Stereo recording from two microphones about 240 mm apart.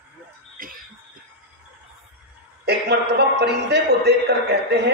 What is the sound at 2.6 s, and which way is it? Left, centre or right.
A man's voice, right.